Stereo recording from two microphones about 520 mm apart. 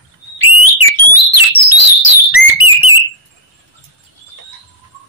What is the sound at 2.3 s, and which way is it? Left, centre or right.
Bird, left.